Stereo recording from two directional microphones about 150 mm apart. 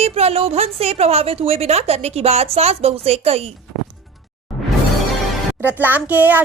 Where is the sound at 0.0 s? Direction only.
45° right (ahead or behind).